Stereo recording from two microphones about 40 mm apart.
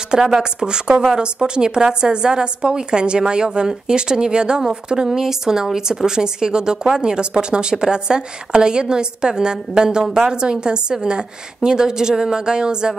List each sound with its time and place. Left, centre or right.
0.1 s a woman's voice: centre